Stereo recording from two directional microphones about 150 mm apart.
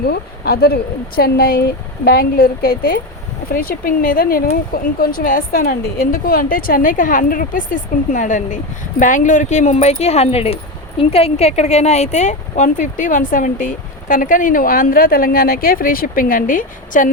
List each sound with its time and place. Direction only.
0.0 s speech: 90° left; by 17.1 s 65° left (ahead or behind)